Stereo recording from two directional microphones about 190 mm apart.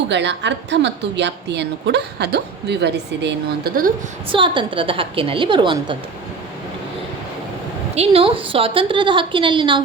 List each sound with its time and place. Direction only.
0.1 s a woman's voice: 65° right (ahead or behind); by 3.9 s 50° right (ahead or behind)
4.3 s a woman's voice: 25° right (ahead or behind)
7.9 s a woman's voice: 30° right (ahead or behind)